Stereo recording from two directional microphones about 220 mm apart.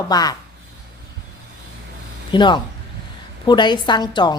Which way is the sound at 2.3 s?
20° left (ahead or behind).